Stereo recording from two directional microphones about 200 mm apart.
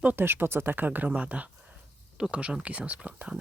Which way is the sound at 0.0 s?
10° right (ahead or behind).